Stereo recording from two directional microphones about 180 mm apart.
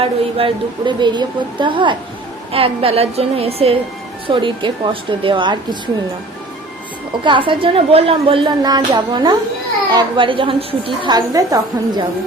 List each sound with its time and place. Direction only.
0.0 s a woman's voice: 30° right (ahead or behind)
7.3 s a woman's voice: 30° right (ahead or behind)